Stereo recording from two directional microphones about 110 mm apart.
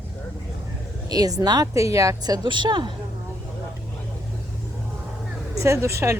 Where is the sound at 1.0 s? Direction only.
35° right (ahead or behind).